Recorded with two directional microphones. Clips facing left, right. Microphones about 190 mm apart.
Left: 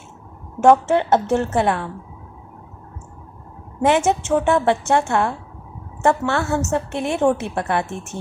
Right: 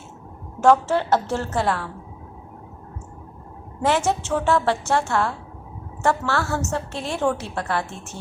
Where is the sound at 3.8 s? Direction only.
20° left (ahead or behind).